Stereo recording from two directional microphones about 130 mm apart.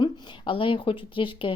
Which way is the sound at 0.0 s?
40° left (ahead or behind).